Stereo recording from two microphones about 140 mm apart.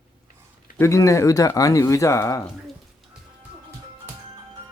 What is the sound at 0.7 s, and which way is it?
Speech, 20° left (ahead or behind).